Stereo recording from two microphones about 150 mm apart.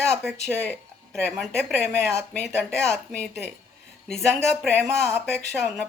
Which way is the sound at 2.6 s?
5° left (ahead or behind).